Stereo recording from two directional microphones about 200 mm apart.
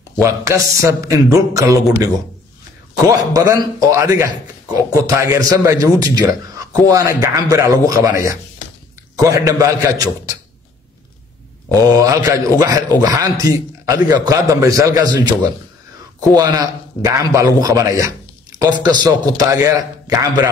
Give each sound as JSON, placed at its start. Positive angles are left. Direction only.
{"t": 0.2, "sound": "a man's voice", "side_deg": -15}
{"t": 2.9, "sound": "a man's voice", "side_deg": -20}
{"t": 11.7, "sound": "a man's voice", "side_deg": -15}